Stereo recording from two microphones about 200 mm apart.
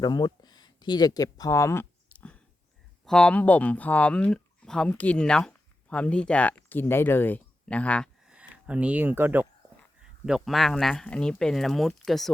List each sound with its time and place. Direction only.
0.0 s speech: 20° left (ahead or behind)
8.3 s speech: 5° right (ahead or behind)